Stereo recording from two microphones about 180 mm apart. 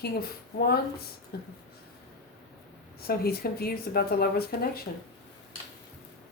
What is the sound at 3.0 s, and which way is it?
Speech, 60° left (ahead or behind).